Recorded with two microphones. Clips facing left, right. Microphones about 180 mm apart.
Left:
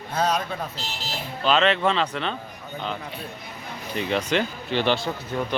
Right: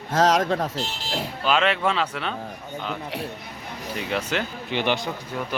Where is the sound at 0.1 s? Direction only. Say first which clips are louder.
Right 5 dB; 90° right.